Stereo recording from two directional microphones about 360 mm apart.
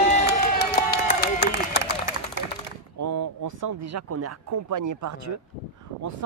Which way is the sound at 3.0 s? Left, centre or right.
Right.